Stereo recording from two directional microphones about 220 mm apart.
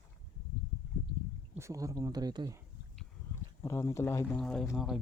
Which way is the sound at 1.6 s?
15° right (ahead or behind).